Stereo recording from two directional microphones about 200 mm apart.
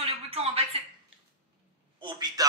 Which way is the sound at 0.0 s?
30° right (ahead or behind).